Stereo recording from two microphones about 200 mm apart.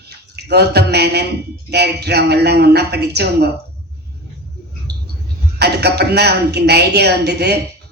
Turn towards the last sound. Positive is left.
turn(degrees=-55)  # may be behind; listen again after turning